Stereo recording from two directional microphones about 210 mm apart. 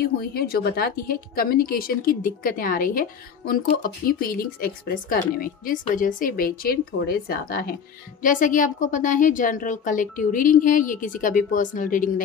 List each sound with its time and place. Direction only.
0.2 s a woman's voice: 45° left (ahead or behind)